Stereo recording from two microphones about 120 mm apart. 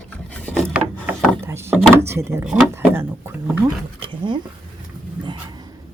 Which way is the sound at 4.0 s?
40° right (ahead or behind).